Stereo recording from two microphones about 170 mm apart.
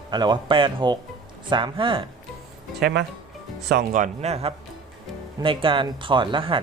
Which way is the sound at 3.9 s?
45° right (ahead or behind).